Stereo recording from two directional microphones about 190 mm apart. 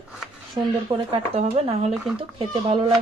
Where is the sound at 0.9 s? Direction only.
25° right (ahead or behind).